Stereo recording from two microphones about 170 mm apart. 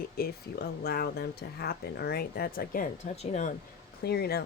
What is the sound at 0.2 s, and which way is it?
Speech, 65° left (ahead or behind).